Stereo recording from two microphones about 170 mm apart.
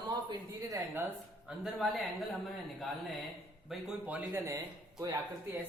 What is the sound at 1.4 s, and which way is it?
Speech, centre (ahead or behind).